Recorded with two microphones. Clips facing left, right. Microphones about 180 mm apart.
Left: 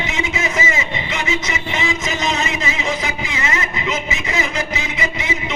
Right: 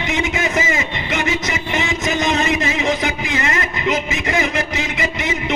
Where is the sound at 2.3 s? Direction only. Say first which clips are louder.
Right 4 dB; 55° right (ahead or behind).